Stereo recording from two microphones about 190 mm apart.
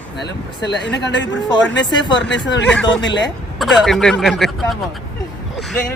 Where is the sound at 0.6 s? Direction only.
65° left (ahead or behind).